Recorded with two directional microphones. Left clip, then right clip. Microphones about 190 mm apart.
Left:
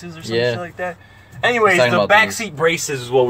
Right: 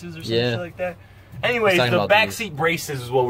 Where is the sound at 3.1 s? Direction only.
15° left (ahead or behind).